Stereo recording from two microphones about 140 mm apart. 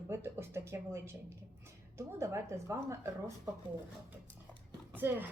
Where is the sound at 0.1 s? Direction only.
20° right (ahead or behind).